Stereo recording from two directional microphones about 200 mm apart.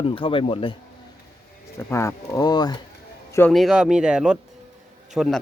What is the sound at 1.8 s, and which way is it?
Speech, 15° left (ahead or behind).